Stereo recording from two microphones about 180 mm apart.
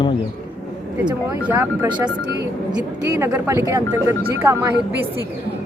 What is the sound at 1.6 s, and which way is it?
A woman's voice, 20° right (ahead or behind).